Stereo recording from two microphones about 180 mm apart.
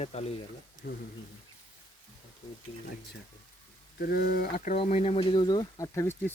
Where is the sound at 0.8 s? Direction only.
75° left (ahead or behind).